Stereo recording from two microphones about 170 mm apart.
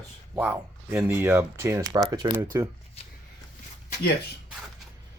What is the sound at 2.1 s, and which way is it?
Speech, 25° right (ahead or behind).